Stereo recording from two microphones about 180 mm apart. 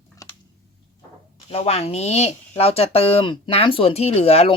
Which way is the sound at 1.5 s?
35° left (ahead or behind).